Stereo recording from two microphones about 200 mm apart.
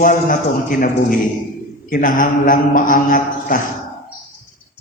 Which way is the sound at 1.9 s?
45° left (ahead or behind).